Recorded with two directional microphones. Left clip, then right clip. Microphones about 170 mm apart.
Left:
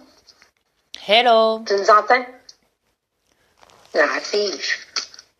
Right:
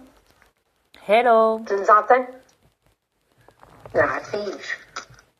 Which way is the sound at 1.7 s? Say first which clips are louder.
Left 1 dB; 50° left (ahead or behind).